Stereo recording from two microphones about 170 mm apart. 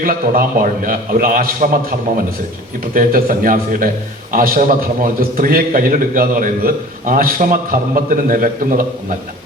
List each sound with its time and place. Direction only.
0.0 s a man's voice: 55° right (ahead or behind)
2.9 s a man's voice: 55° right (ahead or behind)